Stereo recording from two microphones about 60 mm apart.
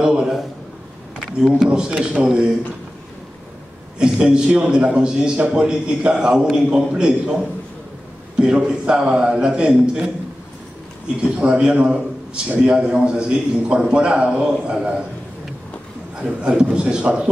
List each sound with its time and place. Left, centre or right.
0.0 s a sound: centre
1.1 s a man's voice: centre
4.0 s a man's voice: centre
11.3 s a man's voice: centre
16.2 s a man's voice: centre